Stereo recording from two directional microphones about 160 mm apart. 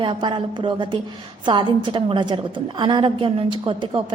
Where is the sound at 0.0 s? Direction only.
30° right (ahead or behind).